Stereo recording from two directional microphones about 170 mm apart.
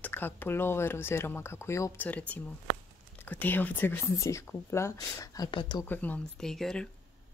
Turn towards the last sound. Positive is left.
turn(degrees=5)  # may be behind; listen again after turning